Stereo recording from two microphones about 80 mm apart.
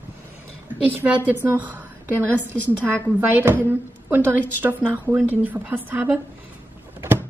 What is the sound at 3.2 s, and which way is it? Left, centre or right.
Speech, right.